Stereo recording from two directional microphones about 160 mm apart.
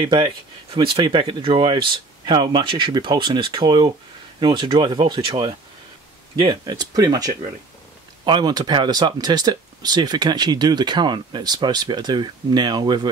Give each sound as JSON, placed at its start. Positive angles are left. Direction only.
{"t": 0.0, "sound": "speech", "side_deg": -30}